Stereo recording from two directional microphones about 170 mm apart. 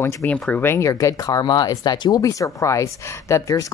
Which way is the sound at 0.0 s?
10° left (ahead or behind).